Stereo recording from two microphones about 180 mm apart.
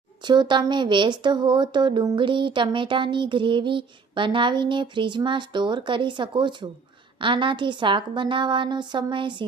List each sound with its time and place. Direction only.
0.3 s speech: 25° right (ahead or behind)